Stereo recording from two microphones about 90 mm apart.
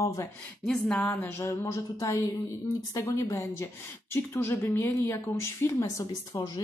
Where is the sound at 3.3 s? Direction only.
30° left (ahead or behind).